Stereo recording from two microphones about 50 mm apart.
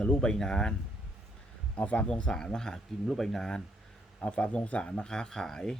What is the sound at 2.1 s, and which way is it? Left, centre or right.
Speech, centre.